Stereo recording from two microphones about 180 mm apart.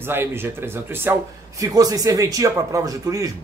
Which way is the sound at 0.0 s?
10° right (ahead or behind).